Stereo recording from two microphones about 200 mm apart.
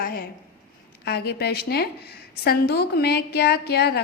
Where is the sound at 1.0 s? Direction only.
55° left (ahead or behind).